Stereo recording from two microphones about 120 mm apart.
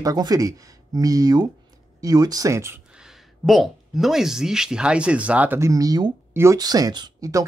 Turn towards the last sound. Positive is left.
turn(degrees=-30)  # may be behind; listen again after turning